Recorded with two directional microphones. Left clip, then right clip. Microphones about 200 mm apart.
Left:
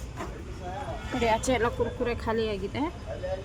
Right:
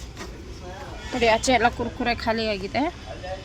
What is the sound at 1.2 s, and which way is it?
Speech, 20° right (ahead or behind).